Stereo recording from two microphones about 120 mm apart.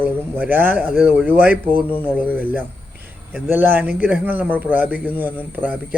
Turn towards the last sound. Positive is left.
turn(degrees=-15)  # may be behind; listen again after turning